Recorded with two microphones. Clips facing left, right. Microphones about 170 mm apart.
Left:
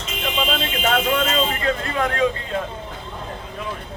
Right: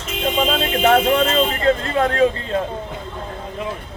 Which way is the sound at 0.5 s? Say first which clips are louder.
Right 8 dB; 45° right (ahead or behind).